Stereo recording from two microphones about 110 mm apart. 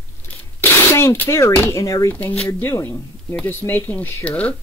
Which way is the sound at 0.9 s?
20° left (ahead or behind).